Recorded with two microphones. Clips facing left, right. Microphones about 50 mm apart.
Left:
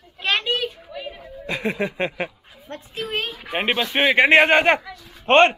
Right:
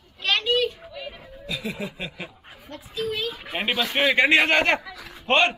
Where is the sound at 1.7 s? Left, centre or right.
Left.